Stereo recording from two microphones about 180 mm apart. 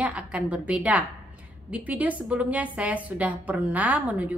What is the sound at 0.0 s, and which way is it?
A woman's voice, 5° right (ahead or behind).